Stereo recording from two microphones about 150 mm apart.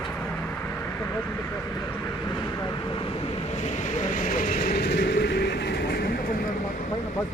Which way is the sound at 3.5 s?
50° left (ahead or behind).